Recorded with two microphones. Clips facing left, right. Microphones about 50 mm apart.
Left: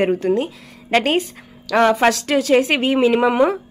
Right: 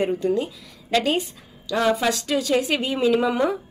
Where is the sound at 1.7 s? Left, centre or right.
Left.